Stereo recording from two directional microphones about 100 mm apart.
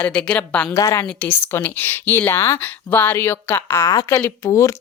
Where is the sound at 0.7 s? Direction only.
35° left (ahead or behind).